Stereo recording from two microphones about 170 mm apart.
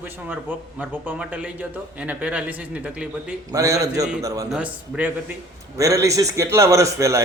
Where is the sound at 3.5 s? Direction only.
20° right (ahead or behind).